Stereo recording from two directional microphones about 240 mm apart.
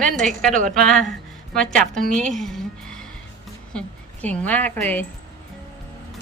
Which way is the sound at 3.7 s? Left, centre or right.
Centre.